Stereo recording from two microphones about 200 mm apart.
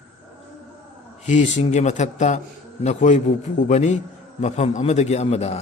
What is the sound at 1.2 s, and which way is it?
A man's voice, 35° left (ahead or behind).